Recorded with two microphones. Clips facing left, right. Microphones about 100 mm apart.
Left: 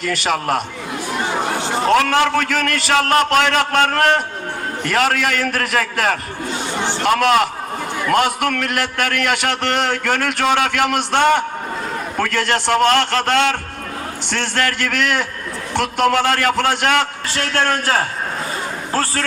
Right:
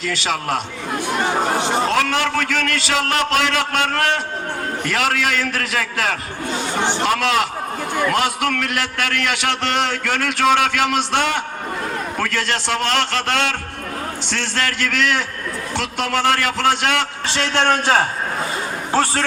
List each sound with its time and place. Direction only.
0.0 s a man's voice: 50° left (ahead or behind)
1.5 s a sound: 20° right (ahead or behind)
1.9 s a man's voice: 55° left (ahead or behind)
17.5 s a man's voice: 25° right (ahead or behind)